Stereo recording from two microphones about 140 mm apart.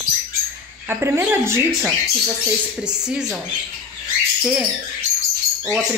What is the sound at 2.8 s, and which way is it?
Speech, 5° right (ahead or behind).